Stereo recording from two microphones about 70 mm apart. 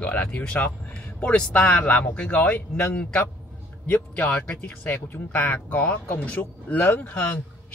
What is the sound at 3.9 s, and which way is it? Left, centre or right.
Speech, left.